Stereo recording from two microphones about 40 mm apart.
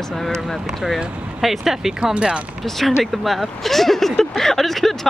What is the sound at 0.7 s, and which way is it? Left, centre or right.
Speech, centre.